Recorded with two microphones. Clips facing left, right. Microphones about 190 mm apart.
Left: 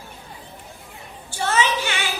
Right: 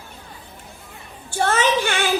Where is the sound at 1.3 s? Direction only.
50° right (ahead or behind).